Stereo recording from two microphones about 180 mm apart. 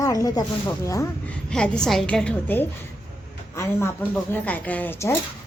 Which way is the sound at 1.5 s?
5° left (ahead or behind).